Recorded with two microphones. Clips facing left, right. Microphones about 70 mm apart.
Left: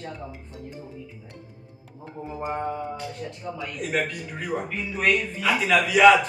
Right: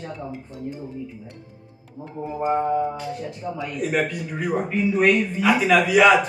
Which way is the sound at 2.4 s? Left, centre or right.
Centre.